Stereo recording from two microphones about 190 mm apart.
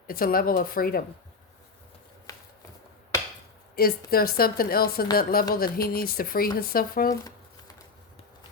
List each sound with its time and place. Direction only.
0.1 s a woman's voice: 50° left (ahead or behind)
2.3 s shuffling cards: 20° left (ahead or behind)
3.8 s a woman's voice: 50° left (ahead or behind)
7.1 s shuffling cards: 20° left (ahead or behind)